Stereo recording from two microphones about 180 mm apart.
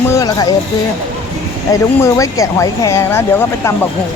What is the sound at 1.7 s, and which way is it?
Speech, 20° left (ahead or behind).